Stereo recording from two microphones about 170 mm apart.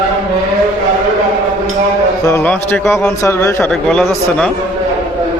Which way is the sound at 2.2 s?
15° left (ahead or behind).